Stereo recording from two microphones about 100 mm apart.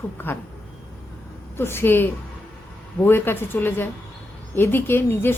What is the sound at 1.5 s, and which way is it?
A woman's voice, 25° left (ahead or behind).